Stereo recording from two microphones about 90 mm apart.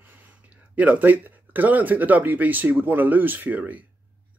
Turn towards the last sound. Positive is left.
turn(degrees=-20)  # may be behind; listen again after turning